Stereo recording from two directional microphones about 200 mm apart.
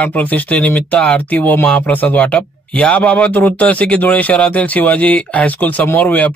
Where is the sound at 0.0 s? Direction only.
5° left (ahead or behind).